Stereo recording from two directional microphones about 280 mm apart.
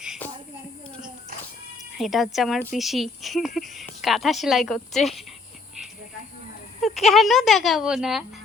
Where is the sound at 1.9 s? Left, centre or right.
Centre.